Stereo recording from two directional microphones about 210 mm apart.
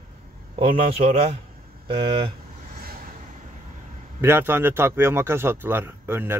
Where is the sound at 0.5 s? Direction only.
30° right (ahead or behind).